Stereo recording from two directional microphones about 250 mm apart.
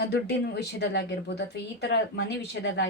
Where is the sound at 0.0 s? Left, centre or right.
Left.